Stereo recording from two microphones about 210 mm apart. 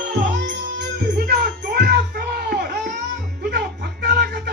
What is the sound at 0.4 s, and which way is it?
Music, 55° right (ahead or behind).